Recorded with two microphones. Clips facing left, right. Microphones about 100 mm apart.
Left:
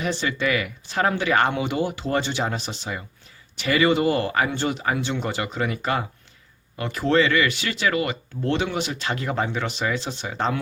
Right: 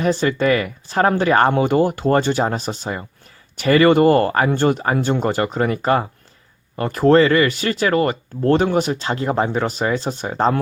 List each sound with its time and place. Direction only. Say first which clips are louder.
0.0 s speech: right 7 dB; 45° right (ahead or behind)